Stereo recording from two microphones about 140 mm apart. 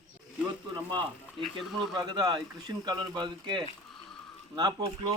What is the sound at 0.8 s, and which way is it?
A man's voice, 35° right (ahead or behind).